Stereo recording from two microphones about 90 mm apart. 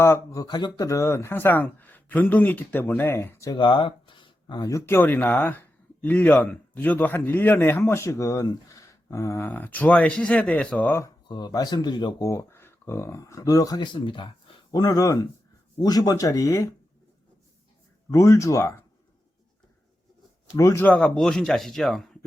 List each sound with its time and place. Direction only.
0.0 s speech: 35° left (ahead or behind)
0.4 s speech: 50° left (ahead or behind); by 3.5 s 30° left (ahead or behind)
3.5 s a sound: 65° left (ahead or behind)
4.6 s speech: 35° left (ahead or behind)
4.9 s speech: 20° left (ahead or behind)
9.5 s speech: 20° left (ahead or behind)
11.3 s speech: 50° left (ahead or behind)
12.2 s speech: 35° left (ahead or behind)
13.8 s speech: 65° left (ahead or behind)
14.7 s speech: 45° left (ahead or behind)
18.1 s speech: 35° left (ahead or behind)
20.6 s speech: 30° left (ahead or behind)
20.8 s a man's voice: 10° left (ahead or behind)